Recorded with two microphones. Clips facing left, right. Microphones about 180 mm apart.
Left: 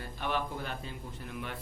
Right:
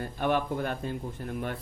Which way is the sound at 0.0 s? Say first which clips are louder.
Right 7 dB; 50° right (ahead or behind).